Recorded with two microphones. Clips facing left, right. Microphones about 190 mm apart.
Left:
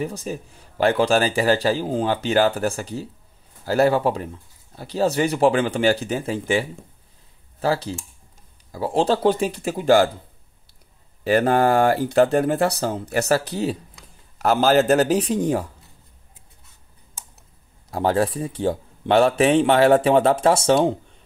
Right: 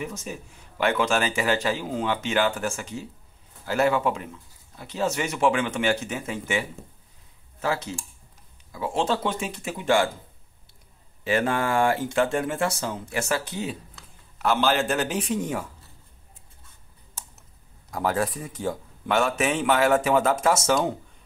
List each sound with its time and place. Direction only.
0.0 s a man's voice: 35° left (ahead or behind)
11.2 s a man's voice: 40° left (ahead or behind)
17.9 s a man's voice: 30° left (ahead or behind)